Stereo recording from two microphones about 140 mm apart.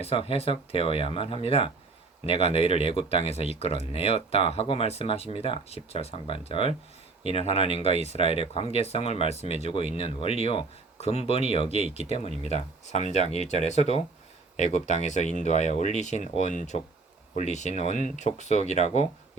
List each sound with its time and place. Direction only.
0.0 s speech: 45° left (ahead or behind)